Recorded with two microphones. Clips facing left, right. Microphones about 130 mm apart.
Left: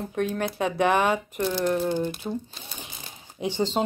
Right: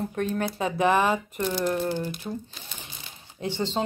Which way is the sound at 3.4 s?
15° left (ahead or behind).